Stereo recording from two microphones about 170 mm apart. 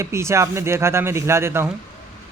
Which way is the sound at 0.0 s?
15° right (ahead or behind).